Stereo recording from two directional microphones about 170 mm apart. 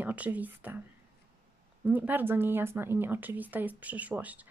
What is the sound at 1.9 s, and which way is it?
Speech, 10° right (ahead or behind).